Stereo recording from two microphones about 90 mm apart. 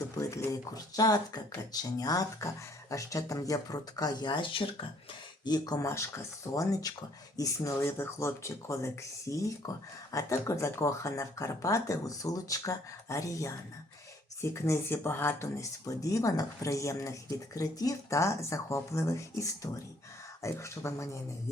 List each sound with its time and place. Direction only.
0.2 s speech: 35° left (ahead or behind); by 4.9 s 75° left (ahead or behind)
5.5 s speech: 50° left (ahead or behind)
5.8 s speech: 30° left (ahead or behind)
15.9 s speech: 40° left (ahead or behind)